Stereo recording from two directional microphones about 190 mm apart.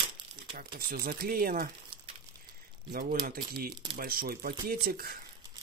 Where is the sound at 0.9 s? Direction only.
50° right (ahead or behind).